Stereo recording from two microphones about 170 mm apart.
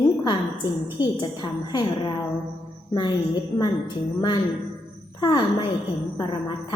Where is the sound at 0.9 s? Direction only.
25° left (ahead or behind).